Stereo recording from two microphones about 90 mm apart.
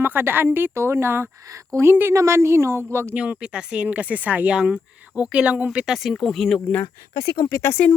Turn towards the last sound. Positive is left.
turn(degrees=25)  # may be behind; listen again after turning